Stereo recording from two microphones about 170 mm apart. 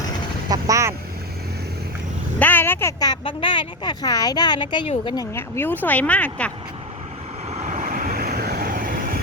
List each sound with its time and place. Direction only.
0.5 s speech: 20° right (ahead or behind)
2.4 s speech: 10° left (ahead or behind)
7.5 s vehicle: 45° right (ahead or behind)